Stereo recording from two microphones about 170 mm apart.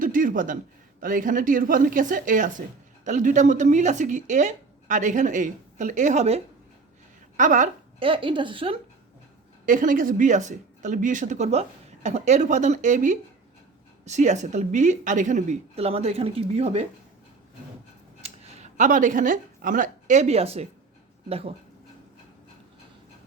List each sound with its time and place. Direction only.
0.0 s a sound: 55° right (ahead or behind)
1.0 s a woman's voice: 55° right (ahead or behind)
7.9 s a woman's voice: 30° right (ahead or behind)
9.6 s a woman's voice: 50° right (ahead or behind)
18.2 s speech: 45° right (ahead or behind)